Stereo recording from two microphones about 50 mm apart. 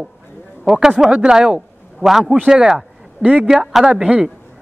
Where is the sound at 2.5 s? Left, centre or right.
Centre.